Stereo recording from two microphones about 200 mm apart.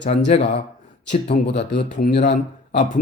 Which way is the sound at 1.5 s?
60° left (ahead or behind).